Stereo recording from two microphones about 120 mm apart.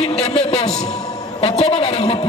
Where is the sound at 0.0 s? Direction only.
55° left (ahead or behind).